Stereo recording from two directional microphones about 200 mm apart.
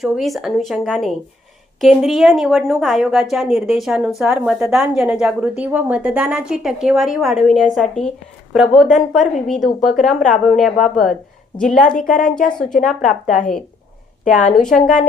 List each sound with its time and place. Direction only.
0.0 s a woman's voice: centre (ahead or behind)
12.0 s speech: 40° left (ahead or behind)
12.4 s a woman's voice: 5° left (ahead or behind)
13.0 s speech: 40° left (ahead or behind)
14.6 s a woman's voice: 5° left (ahead or behind)